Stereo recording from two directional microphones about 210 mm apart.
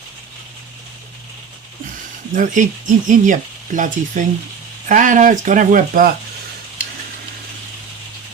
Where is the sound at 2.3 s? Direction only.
35° right (ahead or behind).